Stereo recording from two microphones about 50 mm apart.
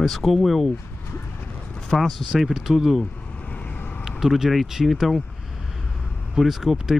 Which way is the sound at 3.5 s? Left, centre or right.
Left.